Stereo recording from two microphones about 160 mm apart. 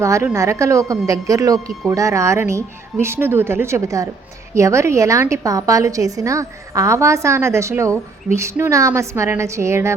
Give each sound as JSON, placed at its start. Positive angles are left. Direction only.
{"t": 0.0, "sound": "a woman's voice", "side_deg": -20}